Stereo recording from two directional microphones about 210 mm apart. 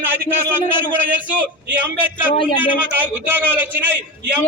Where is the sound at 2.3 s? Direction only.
25° left (ahead or behind).